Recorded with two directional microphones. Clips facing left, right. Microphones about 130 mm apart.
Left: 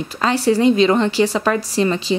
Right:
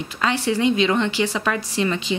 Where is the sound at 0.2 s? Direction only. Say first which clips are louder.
Left 5 dB; 40° left (ahead or behind).